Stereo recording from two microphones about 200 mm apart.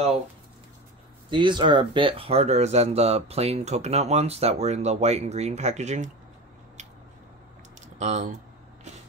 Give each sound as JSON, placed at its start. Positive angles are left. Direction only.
{"t": 1.3, "sound": "speech", "side_deg": -25}
{"t": 8.0, "sound": "speech", "side_deg": -35}